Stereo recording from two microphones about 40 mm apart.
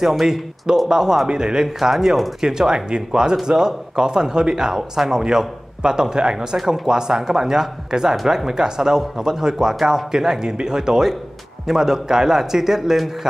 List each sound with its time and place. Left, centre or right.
0.0 s a man's voice: centre
1.8 s a man's voice: centre
2.4 s a man's voice: centre